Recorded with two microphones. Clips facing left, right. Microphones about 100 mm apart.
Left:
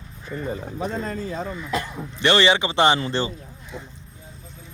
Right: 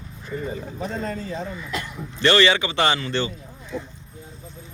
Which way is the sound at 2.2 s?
20° left (ahead or behind).